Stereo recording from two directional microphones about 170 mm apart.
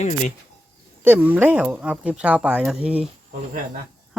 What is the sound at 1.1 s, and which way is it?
Speech, 10° right (ahead or behind).